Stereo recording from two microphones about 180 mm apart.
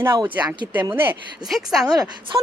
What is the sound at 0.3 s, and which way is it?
Speech, 25° right (ahead or behind).